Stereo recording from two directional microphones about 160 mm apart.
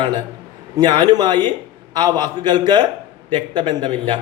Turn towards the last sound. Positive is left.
turn(degrees=-30)  # may be behind; listen again after turning